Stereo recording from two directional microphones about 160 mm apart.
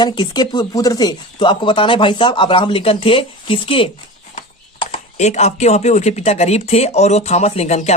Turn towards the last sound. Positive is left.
turn(degrees=45)  # may be behind; listen again after turning